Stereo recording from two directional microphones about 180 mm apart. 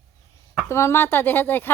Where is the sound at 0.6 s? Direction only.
15° left (ahead or behind).